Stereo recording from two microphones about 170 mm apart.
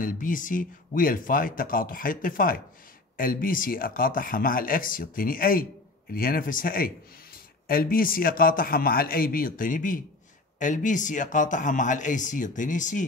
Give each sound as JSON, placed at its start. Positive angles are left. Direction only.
{"t": 0.0, "sound": "speech", "side_deg": 50}